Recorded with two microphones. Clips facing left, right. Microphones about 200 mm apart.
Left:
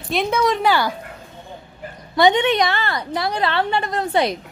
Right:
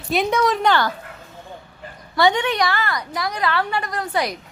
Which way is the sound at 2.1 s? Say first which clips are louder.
Left 3 dB; 20° left (ahead or behind).